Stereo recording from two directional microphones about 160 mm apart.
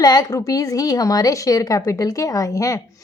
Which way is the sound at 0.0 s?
25° left (ahead or behind).